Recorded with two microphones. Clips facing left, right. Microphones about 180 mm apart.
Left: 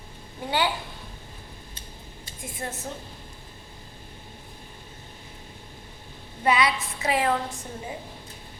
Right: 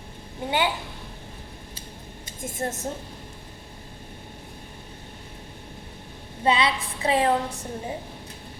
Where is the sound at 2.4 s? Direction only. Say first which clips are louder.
Right 5 dB; 45° right (ahead or behind).